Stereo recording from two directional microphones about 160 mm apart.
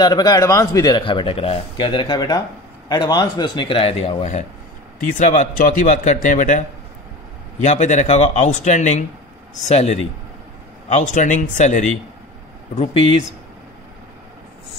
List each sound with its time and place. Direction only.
0.0 s a man's voice: 25° left (ahead or behind); by 6.6 s 55° left (ahead or behind)
7.6 s speech: 45° left (ahead or behind)